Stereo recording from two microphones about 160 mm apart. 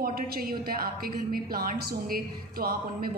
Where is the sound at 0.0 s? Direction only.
65° right (ahead or behind).